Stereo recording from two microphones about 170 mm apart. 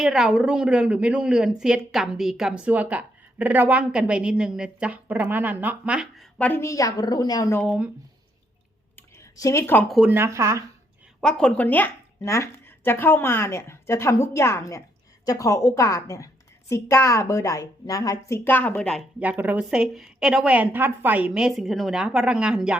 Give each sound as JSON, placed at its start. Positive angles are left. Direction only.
{"t": 0.0, "sound": "speech", "side_deg": -5}
{"t": 6.4, "sound": "a woman's voice", "side_deg": 15}
{"t": 7.6, "sound": "speech", "side_deg": 0}
{"t": 9.4, "sound": "a woman's voice", "side_deg": 15}
{"t": 9.9, "sound": "speech", "side_deg": -10}
{"t": 11.2, "sound": "a woman's voice", "side_deg": 5}
{"t": 19.2, "sound": "speech", "side_deg": -10}